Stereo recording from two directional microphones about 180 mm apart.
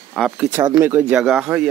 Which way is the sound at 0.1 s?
Centre (ahead or behind).